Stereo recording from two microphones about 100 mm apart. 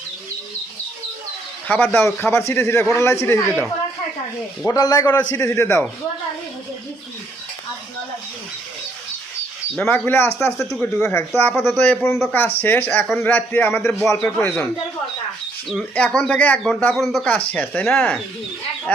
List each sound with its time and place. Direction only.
1.6 s a man's voice: 15° left (ahead or behind)
4.6 s a man's voice: 35° left (ahead or behind)
5.3 s speech: 25° left (ahead or behind)
9.7 s a man's voice: 10° left (ahead or behind)
16.0 s a man's voice: 10° left (ahead or behind)
16.9 s speech: centre (ahead or behind)
17.5 s a man's voice: 10° left (ahead or behind)